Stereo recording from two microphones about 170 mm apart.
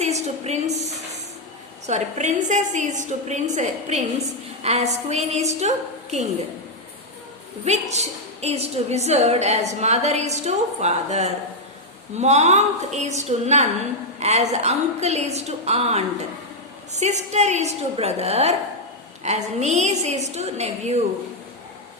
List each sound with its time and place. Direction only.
0.0 s a woman's voice: 40° right (ahead or behind)
1.9 s a woman's voice: 45° right (ahead or behind)
7.6 s a woman's voice: 40° right (ahead or behind)